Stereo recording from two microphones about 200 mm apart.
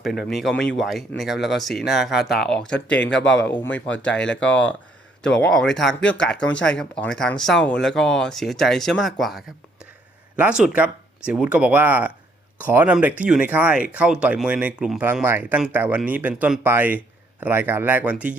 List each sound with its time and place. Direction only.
0.0 s speech: centre (ahead or behind)